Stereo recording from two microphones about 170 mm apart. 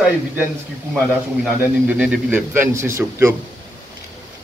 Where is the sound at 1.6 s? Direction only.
10° right (ahead or behind).